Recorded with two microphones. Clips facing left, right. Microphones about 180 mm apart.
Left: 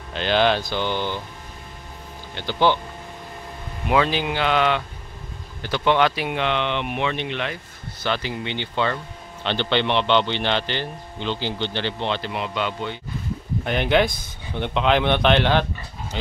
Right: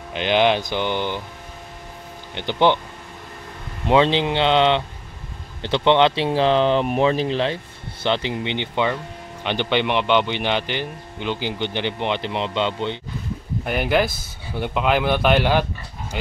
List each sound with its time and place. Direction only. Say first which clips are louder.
0.1 s a man's voice: right 2 dB; 15° right (ahead or behind)
2.3 s speech: right 2 dB; 20° right (ahead or behind)
3.8 s a man's voice: right 4 dB; 25° right (ahead or behind)
13.7 s a man's voice: even; 5° right (ahead or behind)